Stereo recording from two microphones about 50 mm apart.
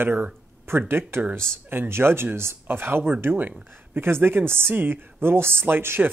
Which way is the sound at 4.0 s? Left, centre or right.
Right.